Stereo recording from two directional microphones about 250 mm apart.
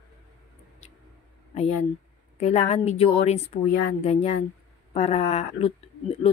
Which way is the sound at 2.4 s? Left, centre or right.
Left.